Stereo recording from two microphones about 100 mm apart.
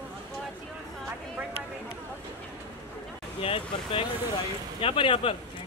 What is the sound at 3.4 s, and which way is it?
Speech, 70° left (ahead or behind).